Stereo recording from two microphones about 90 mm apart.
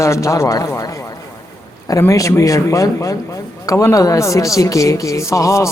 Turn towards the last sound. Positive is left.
turn(degrees=35)  # may be behind; listen again after turning